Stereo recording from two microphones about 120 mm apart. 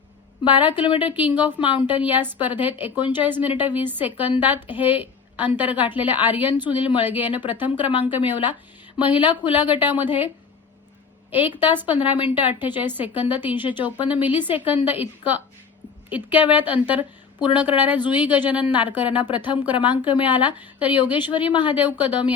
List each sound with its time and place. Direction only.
0.5 s a woman's voice: 15° right (ahead or behind)
0.8 s speech: 40° left (ahead or behind)
1.1 s a woman's voice: 15° right (ahead or behind)
11.3 s a woman's voice: 15° right (ahead or behind)
21.2 s speech: 40° left (ahead or behind)
21.8 s a woman's voice: 15° right (ahead or behind)